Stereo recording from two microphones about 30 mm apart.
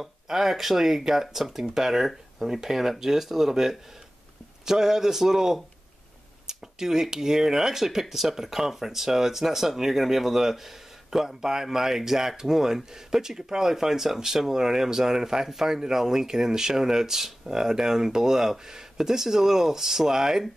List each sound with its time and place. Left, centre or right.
0.0 s speech: centre